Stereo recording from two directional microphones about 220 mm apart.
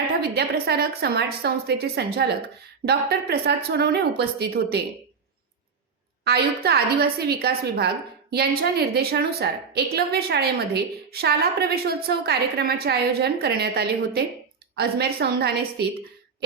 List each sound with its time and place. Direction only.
0.2 s a woman's voice: 45° right (ahead or behind)
6.2 s a woman's voice: 45° right (ahead or behind)